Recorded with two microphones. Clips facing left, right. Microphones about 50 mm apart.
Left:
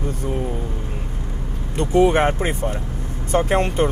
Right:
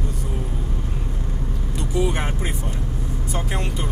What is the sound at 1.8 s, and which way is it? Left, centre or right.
Speech, left.